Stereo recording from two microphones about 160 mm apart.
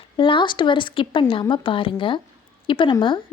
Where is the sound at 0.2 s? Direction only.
30° left (ahead or behind).